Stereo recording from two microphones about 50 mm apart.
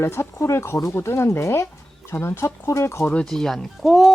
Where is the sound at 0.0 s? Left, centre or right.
Left.